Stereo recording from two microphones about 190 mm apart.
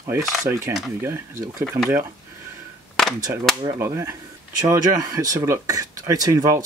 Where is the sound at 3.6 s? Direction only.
20° right (ahead or behind).